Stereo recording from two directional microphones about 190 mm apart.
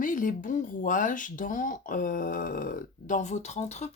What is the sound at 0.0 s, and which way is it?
Speech, 45° left (ahead or behind).